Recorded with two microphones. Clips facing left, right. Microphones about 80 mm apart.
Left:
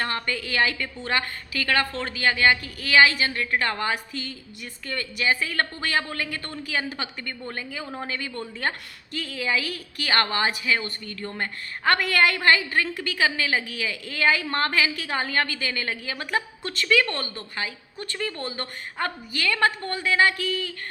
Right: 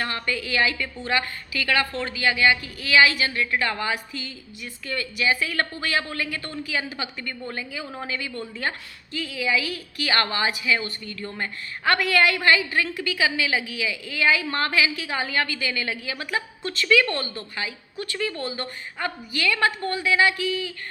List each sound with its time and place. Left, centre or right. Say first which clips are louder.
0.0 s a woman's voice: even; left
16.8 s a woman's voice: right 2 dB; left